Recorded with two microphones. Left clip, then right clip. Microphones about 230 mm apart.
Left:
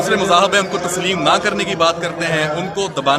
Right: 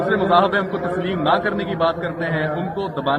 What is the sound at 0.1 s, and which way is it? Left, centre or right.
Speech, centre.